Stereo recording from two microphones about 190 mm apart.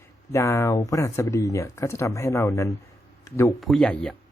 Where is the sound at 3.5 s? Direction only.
Centre (ahead or behind).